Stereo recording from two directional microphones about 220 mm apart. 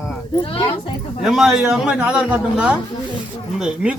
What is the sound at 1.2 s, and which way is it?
A man's voice, centre (ahead or behind).